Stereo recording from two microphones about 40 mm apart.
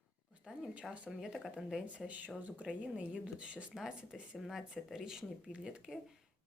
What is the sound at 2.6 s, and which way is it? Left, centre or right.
Speech, right.